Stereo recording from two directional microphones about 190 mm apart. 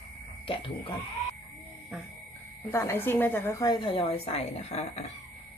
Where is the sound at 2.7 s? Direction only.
15° left (ahead or behind).